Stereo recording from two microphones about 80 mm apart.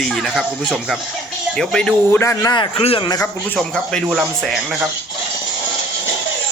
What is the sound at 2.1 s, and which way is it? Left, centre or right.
Speech, left.